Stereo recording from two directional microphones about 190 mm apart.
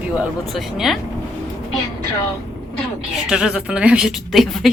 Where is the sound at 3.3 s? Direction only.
5° right (ahead or behind).